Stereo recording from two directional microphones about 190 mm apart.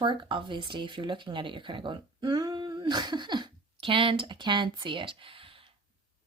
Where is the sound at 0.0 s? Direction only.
25° right (ahead or behind).